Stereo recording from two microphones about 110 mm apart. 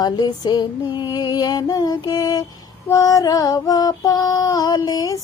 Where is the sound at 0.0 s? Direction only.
40° left (ahead or behind).